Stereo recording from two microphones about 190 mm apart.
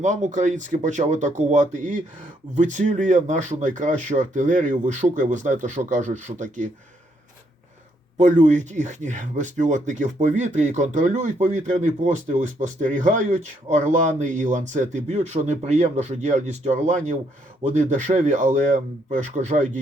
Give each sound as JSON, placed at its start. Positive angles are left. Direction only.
{"t": 0.0, "sound": "speech", "side_deg": -40}
{"t": 8.2, "sound": "speech", "side_deg": -40}